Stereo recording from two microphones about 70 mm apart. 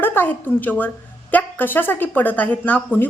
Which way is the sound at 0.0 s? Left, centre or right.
Left.